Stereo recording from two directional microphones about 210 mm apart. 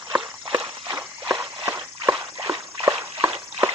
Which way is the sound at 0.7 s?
10° right (ahead or behind).